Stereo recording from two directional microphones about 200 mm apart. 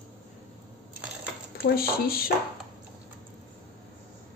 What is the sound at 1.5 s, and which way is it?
Speech, 50° left (ahead or behind).